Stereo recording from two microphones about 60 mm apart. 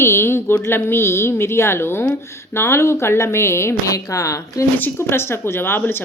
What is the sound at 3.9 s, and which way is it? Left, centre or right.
Speech, left.